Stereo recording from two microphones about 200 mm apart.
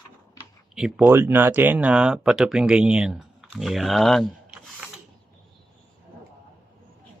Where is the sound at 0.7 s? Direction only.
5° right (ahead or behind).